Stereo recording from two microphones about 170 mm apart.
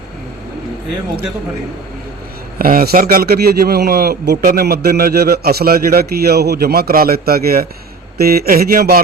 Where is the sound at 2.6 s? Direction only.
55° right (ahead or behind).